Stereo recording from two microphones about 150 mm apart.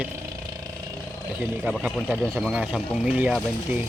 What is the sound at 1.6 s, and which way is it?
Speech, 5° right (ahead or behind).